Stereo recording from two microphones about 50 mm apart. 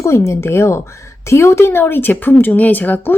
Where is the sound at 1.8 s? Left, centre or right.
Left.